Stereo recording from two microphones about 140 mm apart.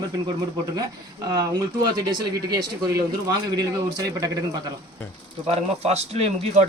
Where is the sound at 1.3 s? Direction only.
30° right (ahead or behind).